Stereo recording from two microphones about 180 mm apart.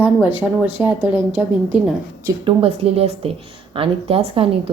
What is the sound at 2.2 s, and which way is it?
Speech, 30° right (ahead or behind).